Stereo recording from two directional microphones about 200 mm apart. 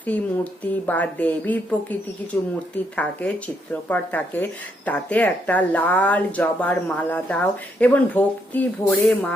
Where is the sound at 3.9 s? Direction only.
10° left (ahead or behind).